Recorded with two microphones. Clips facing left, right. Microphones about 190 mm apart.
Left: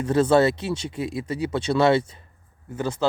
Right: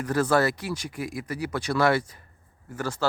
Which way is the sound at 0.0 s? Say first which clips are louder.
Left 5 dB; 25° left (ahead or behind).